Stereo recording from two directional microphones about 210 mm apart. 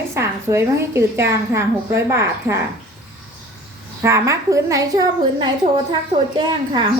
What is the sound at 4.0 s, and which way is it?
A woman's voice, 15° right (ahead or behind).